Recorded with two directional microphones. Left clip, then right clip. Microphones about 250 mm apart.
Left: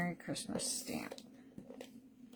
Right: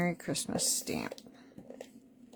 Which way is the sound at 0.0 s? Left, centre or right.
Right.